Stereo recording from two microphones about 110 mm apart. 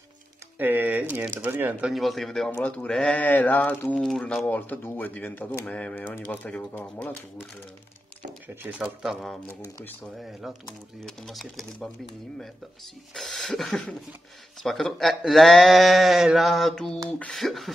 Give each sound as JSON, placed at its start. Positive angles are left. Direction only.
{"t": 0.6, "sound": "a sound", "side_deg": -15}
{"t": 1.1, "sound": "speech", "side_deg": -15}
{"t": 1.9, "sound": "speech", "side_deg": 0}
{"t": 3.9, "sound": "speech", "side_deg": 5}
{"t": 4.5, "sound": "speech", "side_deg": 15}
{"t": 8.6, "sound": "speech", "side_deg": -5}
{"t": 13.1, "sound": "speech", "side_deg": 0}